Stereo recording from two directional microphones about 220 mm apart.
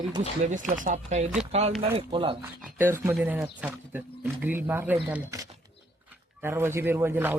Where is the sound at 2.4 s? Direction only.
10° right (ahead or behind).